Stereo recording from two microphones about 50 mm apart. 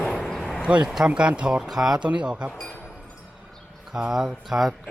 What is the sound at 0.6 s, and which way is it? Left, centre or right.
Speech, right.